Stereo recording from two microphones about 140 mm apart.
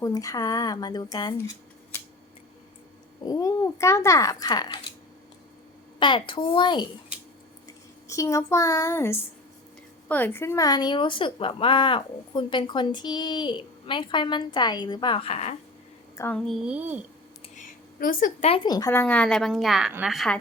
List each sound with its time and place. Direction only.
0.0 s a child's voice: 25° left (ahead or behind)
3.2 s a child's voice: 25° left (ahead or behind)
6.0 s a woman's voice: 35° left (ahead or behind)
16.2 s a child's voice: 20° left (ahead or behind)
16.6 s speech: 10° right (ahead or behind)
17.5 s a sound: 75° left (ahead or behind)
18.4 s a woman's voice: 40° left (ahead or behind)
18.9 s a woman's voice: 10° left (ahead or behind)